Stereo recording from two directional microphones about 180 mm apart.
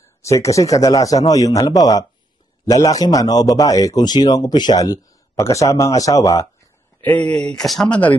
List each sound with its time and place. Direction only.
0.0 s speech: 15° left (ahead or behind)